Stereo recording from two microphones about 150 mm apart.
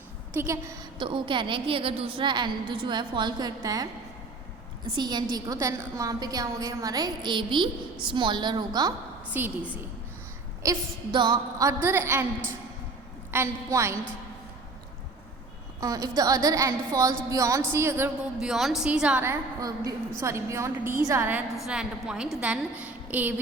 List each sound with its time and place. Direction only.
0.3 s a woman's voice: 20° right (ahead or behind)
0.9 s a woman's voice: 35° right (ahead or behind)
4.9 s a woman's voice: 30° right (ahead or behind)
9.3 s a woman's voice: 10° right (ahead or behind)
10.6 s a woman's voice: 25° right (ahead or behind)
11.8 s a woman's voice: 15° right (ahead or behind)
13.3 s a woman's voice: 20° right (ahead or behind)
15.8 s a woman's voice: 25° right (ahead or behind)
18.3 s a woman's voice: centre (ahead or behind)
19.2 s a woman's voice: 20° right (ahead or behind)